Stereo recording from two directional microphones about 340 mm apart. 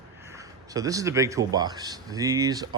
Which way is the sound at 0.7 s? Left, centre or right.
Centre.